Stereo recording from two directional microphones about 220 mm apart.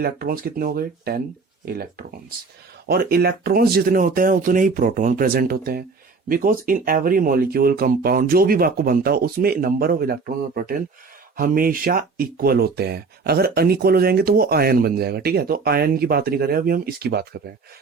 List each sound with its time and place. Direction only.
0.0 s speech: 45° right (ahead or behind)